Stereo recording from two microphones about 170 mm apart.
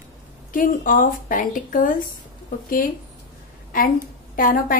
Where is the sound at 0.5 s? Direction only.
55° left (ahead or behind).